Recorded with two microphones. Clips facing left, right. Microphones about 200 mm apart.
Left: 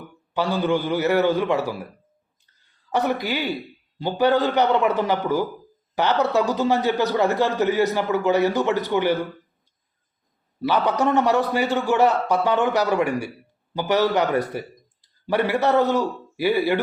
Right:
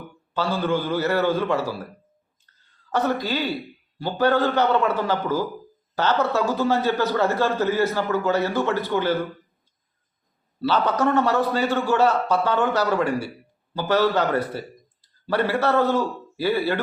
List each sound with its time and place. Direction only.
0.3 s a man's voice: 20° left (ahead or behind)
2.9 s a man's voice: 15° left (ahead or behind)
10.6 s a man's voice: 15° left (ahead or behind)